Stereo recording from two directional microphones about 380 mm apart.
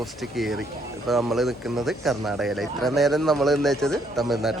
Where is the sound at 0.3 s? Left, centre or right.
Centre.